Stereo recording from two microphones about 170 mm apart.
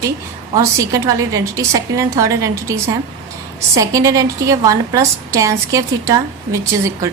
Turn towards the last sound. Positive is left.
turn(degrees=-20)  # may be behind; listen again after turning